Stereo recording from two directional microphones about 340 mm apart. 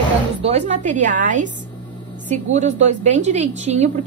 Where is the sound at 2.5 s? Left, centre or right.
Right.